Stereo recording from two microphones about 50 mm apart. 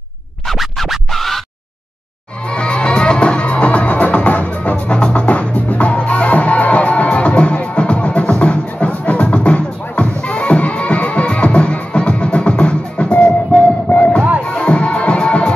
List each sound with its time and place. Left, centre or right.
0.5 s music: centre
2.5 s music: left